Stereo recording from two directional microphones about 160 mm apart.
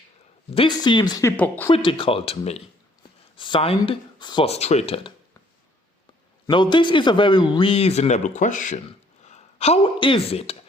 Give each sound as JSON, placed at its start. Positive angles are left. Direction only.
{"t": 0.5, "sound": "speech", "side_deg": 30}
{"t": 1.4, "sound": "speech", "side_deg": 10}
{"t": 1.7, "sound": "speech", "side_deg": 35}
{"t": 4.4, "sound": "speech", "side_deg": 40}
{"t": 6.5, "sound": "speech", "side_deg": 30}